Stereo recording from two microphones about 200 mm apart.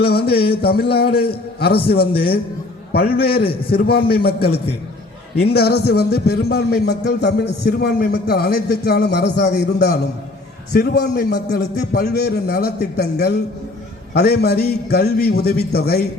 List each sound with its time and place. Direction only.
0.1 s a man's voice: 50° left (ahead or behind)